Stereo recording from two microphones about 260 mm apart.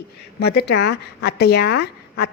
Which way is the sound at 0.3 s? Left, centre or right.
Left.